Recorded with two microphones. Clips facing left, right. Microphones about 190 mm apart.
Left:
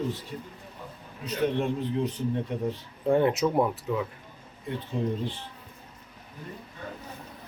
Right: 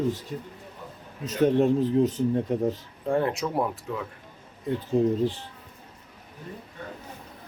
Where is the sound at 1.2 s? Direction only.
40° right (ahead or behind).